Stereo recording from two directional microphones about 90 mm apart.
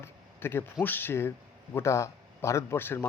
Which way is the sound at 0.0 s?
25° left (ahead or behind).